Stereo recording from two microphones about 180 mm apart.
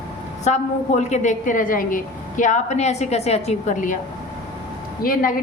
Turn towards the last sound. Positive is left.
turn(degrees=50)  # may be behind; listen again after turning